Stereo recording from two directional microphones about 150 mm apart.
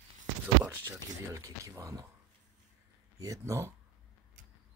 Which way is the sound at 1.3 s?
20° right (ahead or behind).